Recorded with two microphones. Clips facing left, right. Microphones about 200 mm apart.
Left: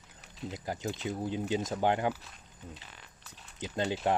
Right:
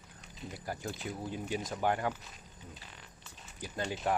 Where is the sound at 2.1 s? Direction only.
Centre (ahead or behind).